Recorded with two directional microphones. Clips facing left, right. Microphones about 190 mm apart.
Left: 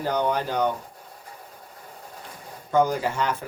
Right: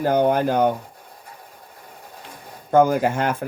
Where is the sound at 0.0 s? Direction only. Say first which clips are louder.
Right 6 dB; 50° right (ahead or behind).